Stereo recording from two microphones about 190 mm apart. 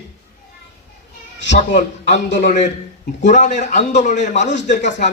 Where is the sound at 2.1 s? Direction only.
70° left (ahead or behind).